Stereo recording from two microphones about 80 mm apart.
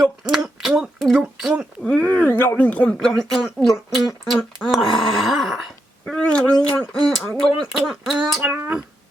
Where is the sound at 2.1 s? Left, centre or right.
Left.